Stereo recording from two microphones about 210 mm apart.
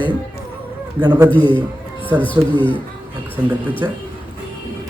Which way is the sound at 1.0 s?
20° right (ahead or behind).